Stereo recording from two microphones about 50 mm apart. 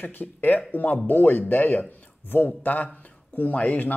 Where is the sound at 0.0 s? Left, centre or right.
Left.